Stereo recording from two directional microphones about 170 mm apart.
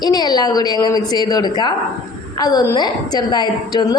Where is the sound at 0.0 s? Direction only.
25° left (ahead or behind).